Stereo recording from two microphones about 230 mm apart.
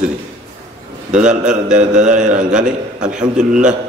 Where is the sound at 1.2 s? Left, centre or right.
Right.